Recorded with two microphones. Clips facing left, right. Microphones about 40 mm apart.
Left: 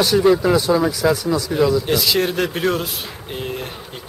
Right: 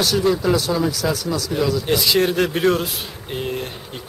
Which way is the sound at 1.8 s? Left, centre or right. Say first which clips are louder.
Right 1 dB; centre.